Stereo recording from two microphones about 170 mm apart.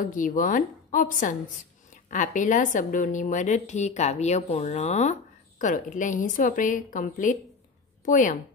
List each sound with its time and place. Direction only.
0.0 s a woman's voice: 50° left (ahead or behind)